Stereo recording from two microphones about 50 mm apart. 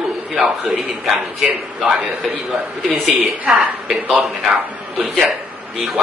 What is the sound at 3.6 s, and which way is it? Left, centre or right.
Speech, centre.